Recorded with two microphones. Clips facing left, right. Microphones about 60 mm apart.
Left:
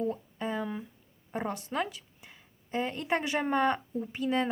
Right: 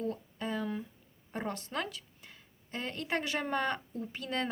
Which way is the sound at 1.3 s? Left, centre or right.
Centre.